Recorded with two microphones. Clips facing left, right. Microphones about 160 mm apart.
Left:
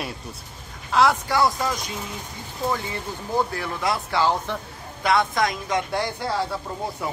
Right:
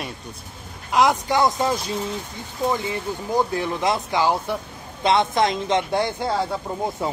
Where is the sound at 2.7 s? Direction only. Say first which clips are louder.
Right 3 dB; 15° right (ahead or behind).